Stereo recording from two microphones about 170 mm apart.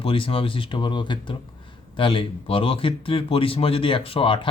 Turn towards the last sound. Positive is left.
turn(degrees=30)  # may be behind; listen again after turning